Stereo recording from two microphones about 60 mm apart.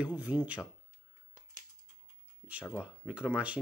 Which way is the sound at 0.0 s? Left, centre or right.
Right.